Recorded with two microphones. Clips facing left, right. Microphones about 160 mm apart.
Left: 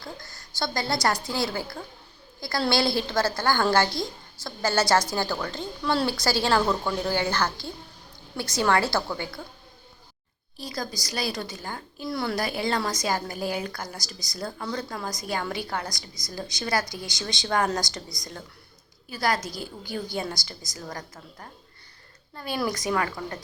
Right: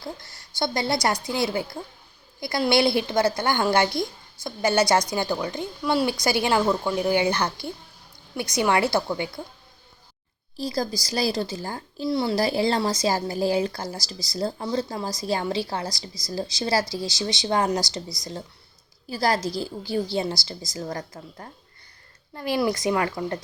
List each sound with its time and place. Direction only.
0.0 s a woman's voice: 25° right (ahead or behind)
10.6 s a woman's voice: 35° right (ahead or behind)
19.0 s a woman's voice: 35° right (ahead or behind)